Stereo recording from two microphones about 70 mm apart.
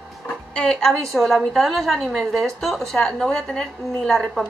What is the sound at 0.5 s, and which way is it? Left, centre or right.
A woman's voice, centre.